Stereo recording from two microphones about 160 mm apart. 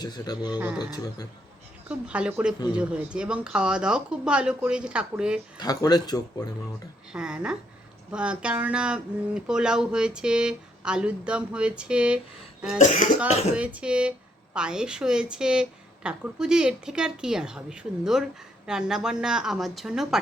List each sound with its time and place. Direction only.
0.0 s a man's voice: 25° left (ahead or behind)
1.9 s speech: 5° right (ahead or behind)
5.5 s a man's voice: 25° left (ahead or behind)
7.1 s speech: 5° right (ahead or behind)
12.8 s speech: 50° left (ahead or behind)
13.6 s speech: 10° right (ahead or behind)